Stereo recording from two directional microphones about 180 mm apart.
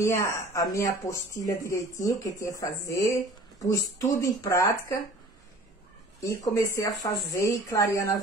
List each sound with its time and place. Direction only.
0.0 s speech: 15° left (ahead or behind)
6.2 s speech: 15° left (ahead or behind)